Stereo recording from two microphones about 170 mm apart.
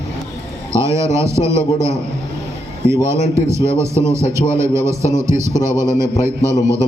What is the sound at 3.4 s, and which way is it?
A man's voice, 15° right (ahead or behind).